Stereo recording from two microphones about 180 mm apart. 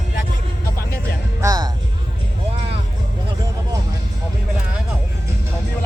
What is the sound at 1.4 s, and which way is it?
Speech, 20° right (ahead or behind).